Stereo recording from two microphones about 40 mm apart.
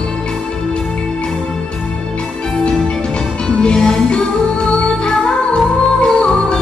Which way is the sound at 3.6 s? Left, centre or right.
Left.